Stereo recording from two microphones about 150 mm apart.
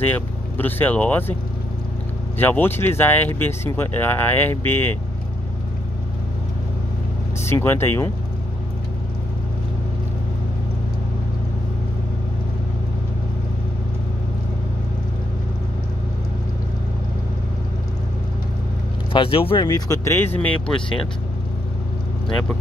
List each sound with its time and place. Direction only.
0.0 s speech: 10° left (ahead or behind)
2.3 s speech: 15° left (ahead or behind)
7.4 s speech: 15° left (ahead or behind)
19.1 s speech: 35° left (ahead or behind); by 21.0 s 5° left (ahead or behind)